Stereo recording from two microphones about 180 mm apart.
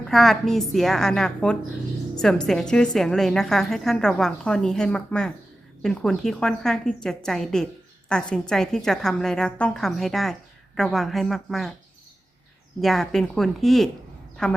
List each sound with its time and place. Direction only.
0.1 s a woman's voice: centre (ahead or behind)
12.8 s a woman's voice: centre (ahead or behind)